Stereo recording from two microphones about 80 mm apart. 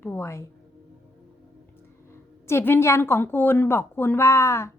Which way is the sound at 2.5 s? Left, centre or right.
Left.